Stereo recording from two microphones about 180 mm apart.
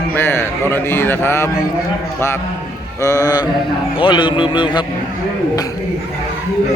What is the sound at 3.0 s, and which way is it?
A man's voice, 20° left (ahead or behind).